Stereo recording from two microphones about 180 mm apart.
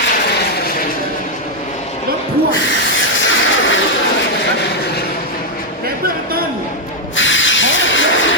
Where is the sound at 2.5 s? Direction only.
90° left; by 5.0 s 70° left (ahead or behind).